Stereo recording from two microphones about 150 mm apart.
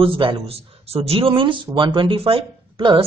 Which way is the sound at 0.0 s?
35° right (ahead or behind).